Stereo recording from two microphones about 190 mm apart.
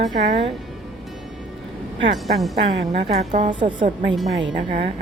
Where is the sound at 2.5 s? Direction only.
35° right (ahead or behind).